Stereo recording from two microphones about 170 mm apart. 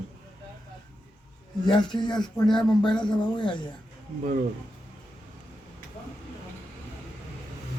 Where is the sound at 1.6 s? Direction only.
25° left (ahead or behind).